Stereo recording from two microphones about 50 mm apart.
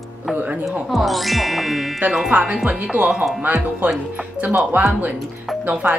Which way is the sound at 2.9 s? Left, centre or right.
Centre.